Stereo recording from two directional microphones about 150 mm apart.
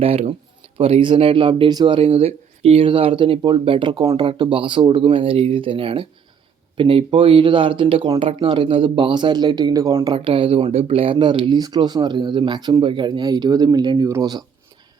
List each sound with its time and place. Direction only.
0.0 s speech: 40° right (ahead or behind); by 10.2 s 25° right (ahead or behind)
10.2 s speech: 35° right (ahead or behind)